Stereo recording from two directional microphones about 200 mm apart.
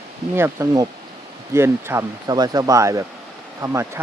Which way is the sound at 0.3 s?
15° right (ahead or behind).